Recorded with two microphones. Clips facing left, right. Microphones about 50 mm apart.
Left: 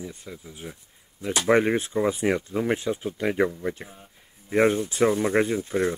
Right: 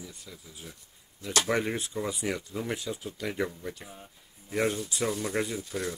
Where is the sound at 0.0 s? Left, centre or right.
Left.